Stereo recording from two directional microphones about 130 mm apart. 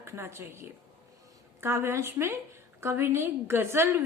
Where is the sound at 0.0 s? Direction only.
20° right (ahead or behind).